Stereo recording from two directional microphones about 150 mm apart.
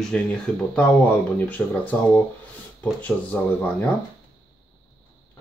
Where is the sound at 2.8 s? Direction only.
10° left (ahead or behind).